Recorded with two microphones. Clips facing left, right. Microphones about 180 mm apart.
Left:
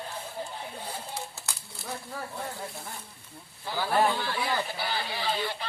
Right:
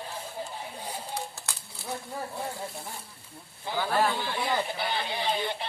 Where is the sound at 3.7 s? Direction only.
20° right (ahead or behind).